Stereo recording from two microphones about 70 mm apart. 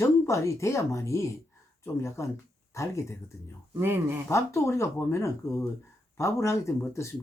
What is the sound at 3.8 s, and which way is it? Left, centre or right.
Speech, right.